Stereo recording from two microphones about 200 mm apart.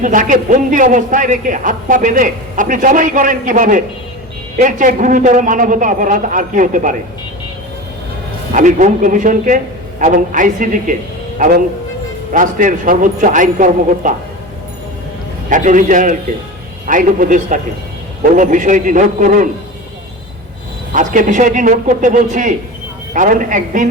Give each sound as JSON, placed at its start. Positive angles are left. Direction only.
{"t": 0.0, "sound": "a man's voice", "side_deg": -40}
{"t": 8.5, "sound": "a man's voice", "side_deg": -40}
{"t": 15.4, "sound": "a man's voice", "side_deg": -40}
{"t": 20.9, "sound": "a man's voice", "side_deg": -40}